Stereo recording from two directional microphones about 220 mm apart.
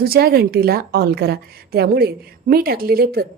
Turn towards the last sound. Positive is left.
turn(degrees=-45)  # may be behind; listen again after turning